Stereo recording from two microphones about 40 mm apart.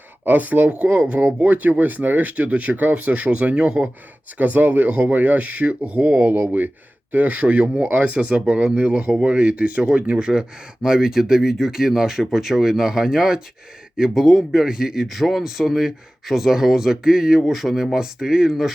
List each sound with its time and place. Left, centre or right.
0.3 s speech: right
0.7 s speech: right
4.4 s speech: right
4.9 s speech: right
5.1 s speech: right
6.2 s speech: right
7.1 s speech: right; by 13.4 s centre
14.1 s speech: centre
17.4 s speech: centre
17.9 s speech: centre